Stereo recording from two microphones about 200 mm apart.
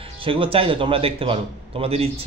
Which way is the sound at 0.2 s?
25° right (ahead or behind).